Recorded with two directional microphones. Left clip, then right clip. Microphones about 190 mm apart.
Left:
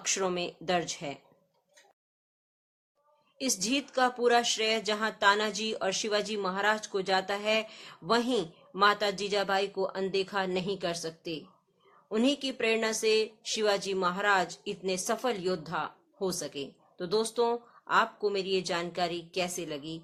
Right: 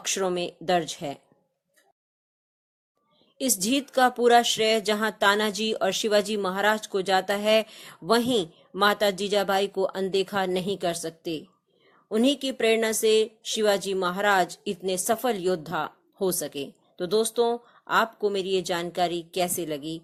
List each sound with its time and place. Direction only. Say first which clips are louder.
0.0 s speech: right 4 dB; 30° right (ahead or behind)
3.3 s speech: right 4 dB; 35° right (ahead or behind)